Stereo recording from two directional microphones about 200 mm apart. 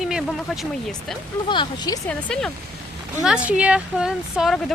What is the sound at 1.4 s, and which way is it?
Speech, 20° left (ahead or behind).